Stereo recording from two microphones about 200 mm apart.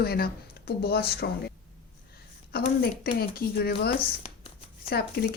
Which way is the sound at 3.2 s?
50° left (ahead or behind).